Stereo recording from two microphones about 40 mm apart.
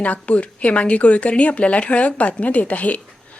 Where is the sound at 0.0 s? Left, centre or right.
Left.